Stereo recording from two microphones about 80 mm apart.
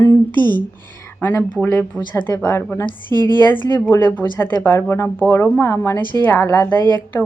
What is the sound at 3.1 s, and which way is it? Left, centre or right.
Speech, right.